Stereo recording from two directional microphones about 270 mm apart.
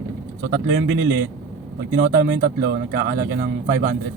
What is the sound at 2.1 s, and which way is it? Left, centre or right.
Speech, right.